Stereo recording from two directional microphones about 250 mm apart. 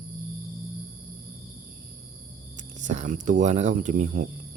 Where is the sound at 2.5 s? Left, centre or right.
Right.